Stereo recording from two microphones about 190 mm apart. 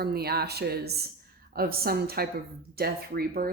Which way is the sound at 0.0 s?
55° right (ahead or behind).